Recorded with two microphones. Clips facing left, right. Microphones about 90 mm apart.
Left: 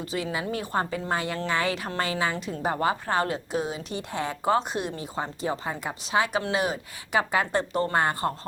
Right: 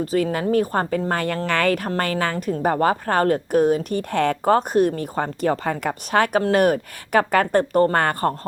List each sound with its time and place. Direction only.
0.0 s a woman's voice: 45° right (ahead or behind)